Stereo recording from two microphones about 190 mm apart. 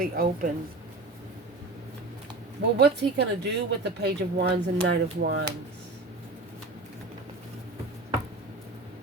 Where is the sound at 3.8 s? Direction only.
65° right (ahead or behind).